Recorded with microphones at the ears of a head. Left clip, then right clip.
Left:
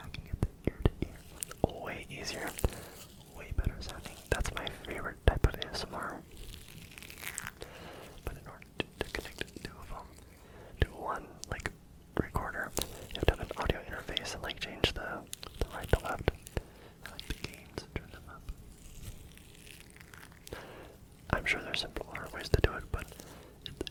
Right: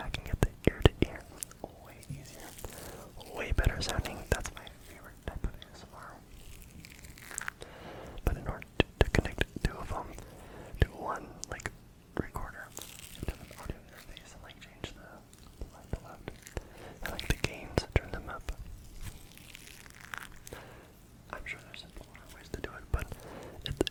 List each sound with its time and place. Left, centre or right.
0.0 s whispering: right
1.5 s whispering: left
3.3 s whispering: right
4.5 s whispering: left
8.2 s whispering: right
10.8 s whispering: centre
12.3 s whispering: left
16.8 s whispering: right
21.2 s whispering: left
23.3 s whispering: right